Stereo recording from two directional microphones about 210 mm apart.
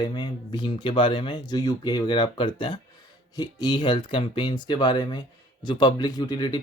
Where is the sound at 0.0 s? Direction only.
20° left (ahead or behind).